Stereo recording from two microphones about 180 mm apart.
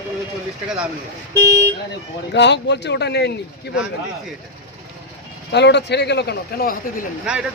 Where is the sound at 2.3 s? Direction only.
75° left (ahead or behind).